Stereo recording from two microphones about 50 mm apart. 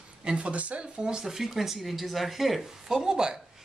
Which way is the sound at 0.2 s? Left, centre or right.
Right.